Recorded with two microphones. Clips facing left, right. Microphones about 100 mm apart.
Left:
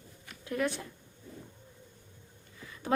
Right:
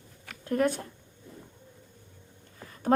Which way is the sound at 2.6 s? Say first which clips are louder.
Right 8 dB; 45° right (ahead or behind).